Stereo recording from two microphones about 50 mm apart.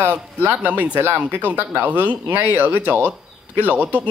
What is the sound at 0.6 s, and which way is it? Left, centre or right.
Speech, right.